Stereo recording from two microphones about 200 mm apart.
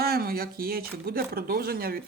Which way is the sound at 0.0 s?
50° right (ahead or behind).